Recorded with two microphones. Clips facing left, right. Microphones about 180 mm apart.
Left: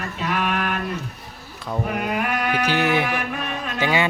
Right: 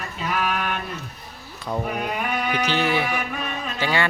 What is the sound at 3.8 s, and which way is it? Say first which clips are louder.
Speech: left 2 dB; 15° left (ahead or behind).